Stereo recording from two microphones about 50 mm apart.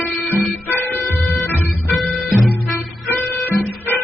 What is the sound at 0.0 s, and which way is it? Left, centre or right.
Music, left.